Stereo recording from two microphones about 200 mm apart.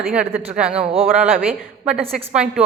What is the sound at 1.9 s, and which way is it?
Speech, 5° right (ahead or behind).